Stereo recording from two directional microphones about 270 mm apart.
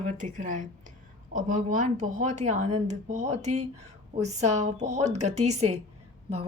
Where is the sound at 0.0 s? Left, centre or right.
Right.